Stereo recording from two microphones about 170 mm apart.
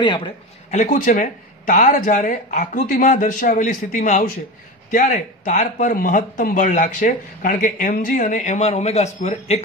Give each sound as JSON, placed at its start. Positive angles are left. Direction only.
{"t": 0.0, "sound": "a man's voice", "side_deg": 25}
{"t": 0.7, "sound": "speech", "side_deg": 45}